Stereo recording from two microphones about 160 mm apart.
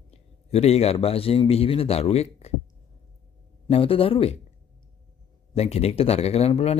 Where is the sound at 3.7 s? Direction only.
35° left (ahead or behind).